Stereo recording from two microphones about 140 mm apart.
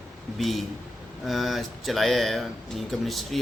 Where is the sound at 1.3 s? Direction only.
Centre (ahead or behind).